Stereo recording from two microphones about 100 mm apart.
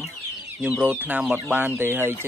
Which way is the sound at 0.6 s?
15° right (ahead or behind).